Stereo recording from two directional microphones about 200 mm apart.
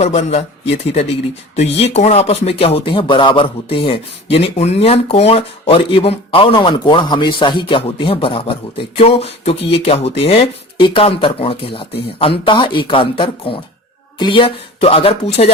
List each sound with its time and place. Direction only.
0.0 s speech: 30° left (ahead or behind)